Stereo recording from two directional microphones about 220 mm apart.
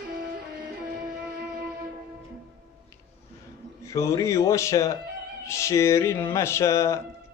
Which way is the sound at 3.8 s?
15° left (ahead or behind).